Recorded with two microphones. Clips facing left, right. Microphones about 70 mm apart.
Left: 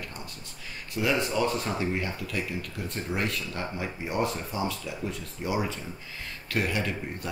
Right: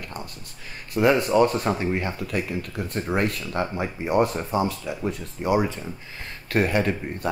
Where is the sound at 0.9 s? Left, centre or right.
Right.